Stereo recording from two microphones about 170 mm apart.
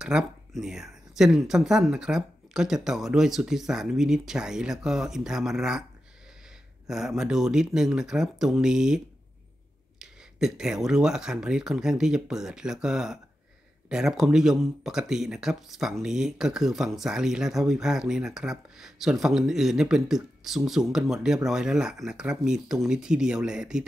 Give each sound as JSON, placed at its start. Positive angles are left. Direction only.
{"t": 0.0, "sound": "speech", "side_deg": -5}
{"t": 6.9, "sound": "speech", "side_deg": -5}